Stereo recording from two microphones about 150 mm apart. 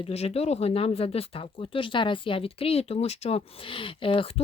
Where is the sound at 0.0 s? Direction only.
45° left (ahead or behind).